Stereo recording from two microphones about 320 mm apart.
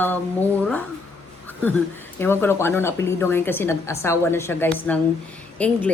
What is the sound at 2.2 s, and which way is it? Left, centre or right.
A woman's voice, centre.